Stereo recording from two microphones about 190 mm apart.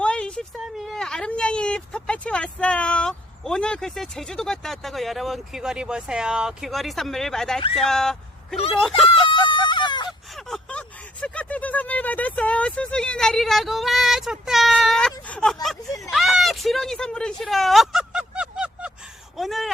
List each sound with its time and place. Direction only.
0.0 s speech: 5° left (ahead or behind)
7.6 s speech: 30° left (ahead or behind)
7.9 s speech: centre (ahead or behind)
9.5 s a sound: 25° left (ahead or behind)
10.1 s gasp: centre (ahead or behind)
15.6 s speech: centre (ahead or behind)
19.4 s gasp: centre (ahead or behind)